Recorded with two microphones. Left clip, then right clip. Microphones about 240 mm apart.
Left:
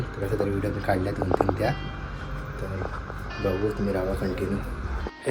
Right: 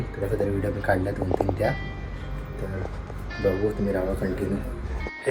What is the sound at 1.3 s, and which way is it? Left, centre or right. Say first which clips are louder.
Speech: left 3 dB; right.